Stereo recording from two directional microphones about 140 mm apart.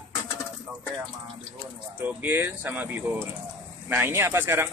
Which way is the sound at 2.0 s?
15° right (ahead or behind).